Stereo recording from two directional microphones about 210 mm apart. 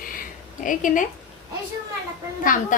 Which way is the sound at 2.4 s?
40° left (ahead or behind).